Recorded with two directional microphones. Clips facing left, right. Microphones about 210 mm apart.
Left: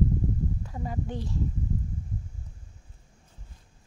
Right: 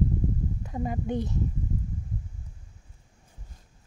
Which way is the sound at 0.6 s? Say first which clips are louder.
Right 3 dB; 20° right (ahead or behind).